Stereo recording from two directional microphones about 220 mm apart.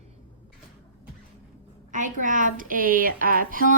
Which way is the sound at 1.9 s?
35° right (ahead or behind).